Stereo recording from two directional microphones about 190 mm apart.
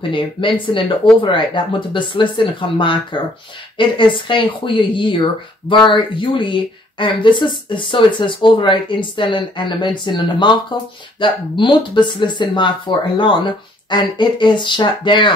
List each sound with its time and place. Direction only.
0.1 s speech: 25° left (ahead or behind)